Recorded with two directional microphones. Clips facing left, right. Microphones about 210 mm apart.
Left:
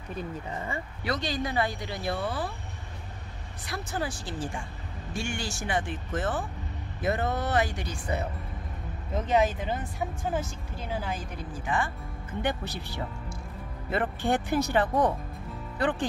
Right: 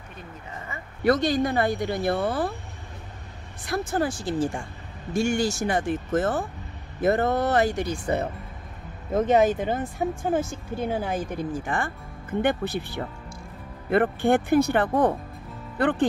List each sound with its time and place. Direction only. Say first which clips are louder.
1.0 s speech: right 10 dB; 50° right (ahead or behind)
3.6 s speech: right 8 dB; 50° right (ahead or behind)